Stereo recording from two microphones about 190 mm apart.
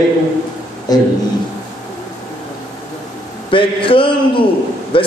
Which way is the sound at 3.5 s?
25° left (ahead or behind).